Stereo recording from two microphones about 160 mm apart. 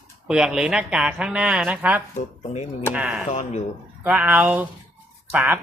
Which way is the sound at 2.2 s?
45° left (ahead or behind).